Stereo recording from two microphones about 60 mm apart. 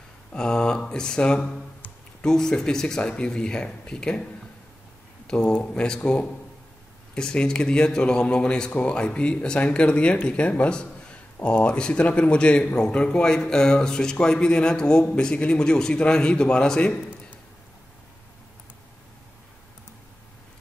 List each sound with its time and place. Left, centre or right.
0.3 s a man's voice: centre
5.2 s a sound: centre
5.7 s a man's voice: centre